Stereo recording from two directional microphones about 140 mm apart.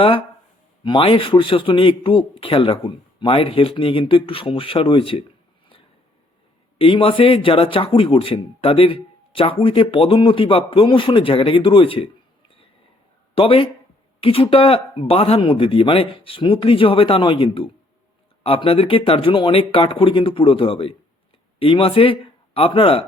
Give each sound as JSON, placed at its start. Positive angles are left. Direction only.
{"t": 0.0, "sound": "a man's voice", "side_deg": 40}
{"t": 6.7, "sound": "a man's voice", "side_deg": 40}
{"t": 13.3, "sound": "a man's voice", "side_deg": 40}